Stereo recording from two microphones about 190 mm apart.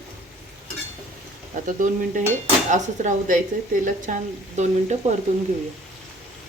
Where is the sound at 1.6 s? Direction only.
45° right (ahead or behind).